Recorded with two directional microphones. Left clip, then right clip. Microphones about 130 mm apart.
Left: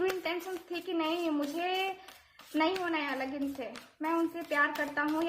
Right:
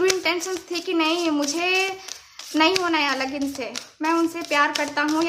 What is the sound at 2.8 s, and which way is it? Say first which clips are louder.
A woman's voice: right 11 dB; 30° right (ahead or behind).